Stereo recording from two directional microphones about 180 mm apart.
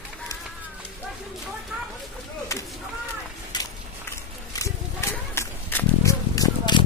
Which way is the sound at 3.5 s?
25° left (ahead or behind).